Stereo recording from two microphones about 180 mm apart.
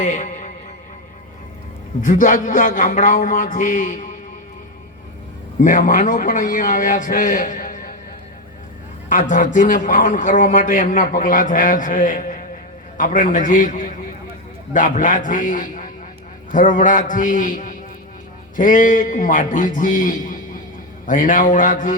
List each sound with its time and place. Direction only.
0.0 s a man's voice: 45° left (ahead or behind)
2.0 s a man's voice: 45° left (ahead or behind)
5.5 s a man's voice: 45° left (ahead or behind)
9.0 s a man's voice: 45° left (ahead or behind)